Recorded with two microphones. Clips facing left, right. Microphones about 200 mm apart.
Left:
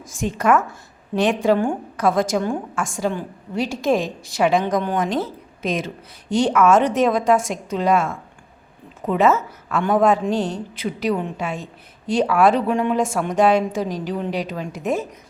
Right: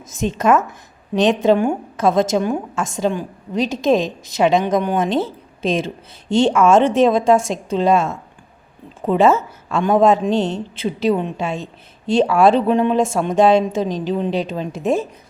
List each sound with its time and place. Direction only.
0.0 s speech: 20° right (ahead or behind)
4.9 s speech: 25° right (ahead or behind)